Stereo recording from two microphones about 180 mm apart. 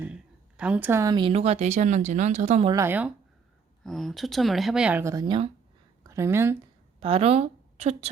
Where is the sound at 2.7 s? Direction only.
10° right (ahead or behind).